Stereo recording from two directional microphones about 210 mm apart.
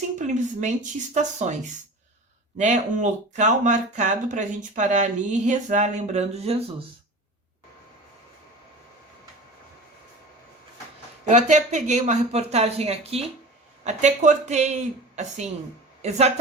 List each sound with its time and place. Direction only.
0.2 s speech: 35° right (ahead or behind)
2.6 s speech: 35° right (ahead or behind)
11.3 s a woman's voice: 35° right (ahead or behind)